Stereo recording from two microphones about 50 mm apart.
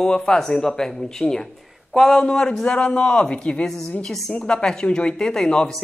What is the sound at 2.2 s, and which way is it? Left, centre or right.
Speech, centre.